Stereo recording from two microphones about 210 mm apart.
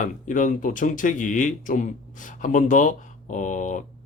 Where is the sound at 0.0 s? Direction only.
40° left (ahead or behind).